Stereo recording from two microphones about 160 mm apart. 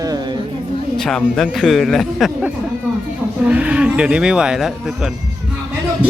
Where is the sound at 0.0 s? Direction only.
25° right (ahead or behind).